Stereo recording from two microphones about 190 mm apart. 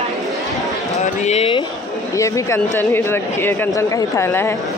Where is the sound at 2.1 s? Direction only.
15° left (ahead or behind).